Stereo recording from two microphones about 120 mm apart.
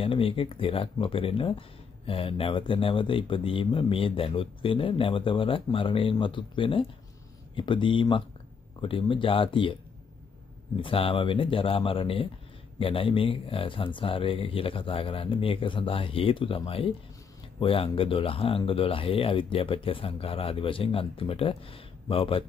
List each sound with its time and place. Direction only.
0.0 s speech: 50° left (ahead or behind)
10.8 s speech: 50° left (ahead or behind)